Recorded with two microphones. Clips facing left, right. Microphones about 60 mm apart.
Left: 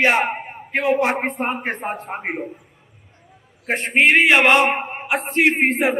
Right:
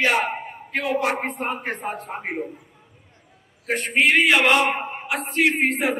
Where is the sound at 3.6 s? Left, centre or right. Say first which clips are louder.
Left 3 dB; left.